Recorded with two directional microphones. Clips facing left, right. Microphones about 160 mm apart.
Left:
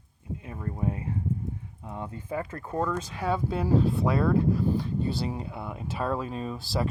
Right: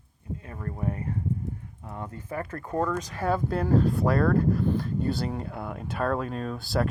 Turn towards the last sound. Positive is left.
turn(degrees=0)  # may be behind; listen again after turning